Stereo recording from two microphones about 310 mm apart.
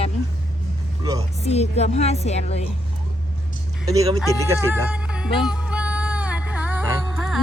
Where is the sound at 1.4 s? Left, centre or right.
Centre.